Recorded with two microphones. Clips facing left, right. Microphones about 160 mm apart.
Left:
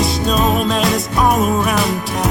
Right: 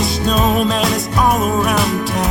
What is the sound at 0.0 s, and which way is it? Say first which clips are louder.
Music: even; centre (ahead or behind).